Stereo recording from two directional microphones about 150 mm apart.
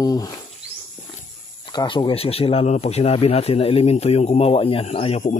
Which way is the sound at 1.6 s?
30° left (ahead or behind).